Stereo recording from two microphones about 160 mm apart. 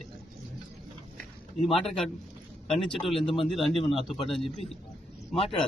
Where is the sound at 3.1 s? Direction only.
35° left (ahead or behind).